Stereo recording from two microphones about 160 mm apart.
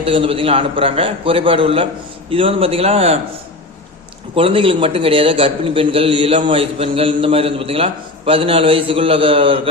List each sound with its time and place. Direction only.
0.0 s a man's voice: 35° right (ahead or behind)
4.4 s a man's voice: 35° right (ahead or behind)